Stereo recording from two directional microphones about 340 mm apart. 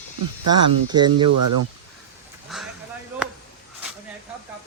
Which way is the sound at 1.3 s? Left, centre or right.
Right.